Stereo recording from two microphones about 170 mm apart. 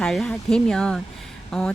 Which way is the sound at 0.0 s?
Centre (ahead or behind).